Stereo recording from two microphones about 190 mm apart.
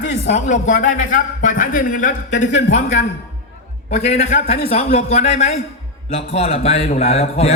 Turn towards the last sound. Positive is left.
turn(degrees=35)  # may be behind; listen again after turning